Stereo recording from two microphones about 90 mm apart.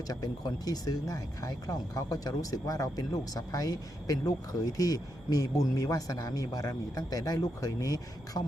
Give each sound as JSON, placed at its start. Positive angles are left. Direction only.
{"t": 0.1, "sound": "speech", "side_deg": 45}